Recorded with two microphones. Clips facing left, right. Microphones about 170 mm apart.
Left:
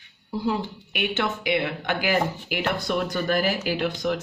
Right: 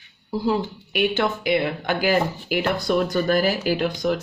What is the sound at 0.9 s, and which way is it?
Speech, 40° right (ahead or behind).